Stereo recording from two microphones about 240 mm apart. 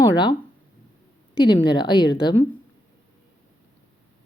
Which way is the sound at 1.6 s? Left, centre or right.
Centre.